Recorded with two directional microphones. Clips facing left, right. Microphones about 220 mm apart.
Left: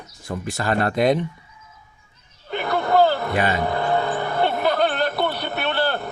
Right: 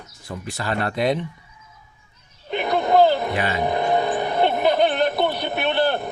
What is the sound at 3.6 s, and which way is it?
Vehicle, 20° right (ahead or behind).